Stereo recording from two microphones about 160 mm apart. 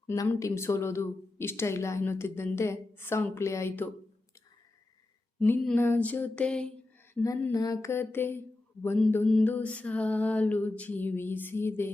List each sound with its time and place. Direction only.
0.1 s speech: 20° left (ahead or behind)
5.4 s speech: 10° left (ahead or behind)